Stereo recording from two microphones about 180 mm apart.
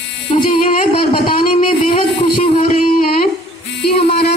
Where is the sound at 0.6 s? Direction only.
50° left (ahead or behind).